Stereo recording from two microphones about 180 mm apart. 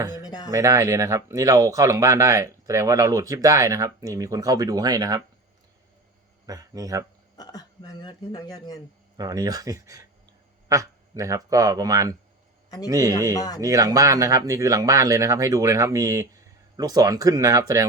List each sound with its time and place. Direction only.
0.2 s speech: 20° left (ahead or behind)
0.5 s speech: 15° right (ahead or behind)
6.4 s speech: 20° right (ahead or behind)
7.3 s speech: 20° left (ahead or behind)
9.1 s speech: 20° right (ahead or behind)
13.6 s speech: 20° right (ahead or behind)